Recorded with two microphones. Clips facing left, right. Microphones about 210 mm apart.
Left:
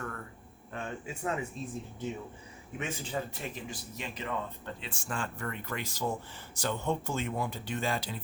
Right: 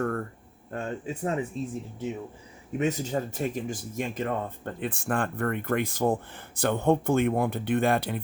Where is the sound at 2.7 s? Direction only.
40° right (ahead or behind).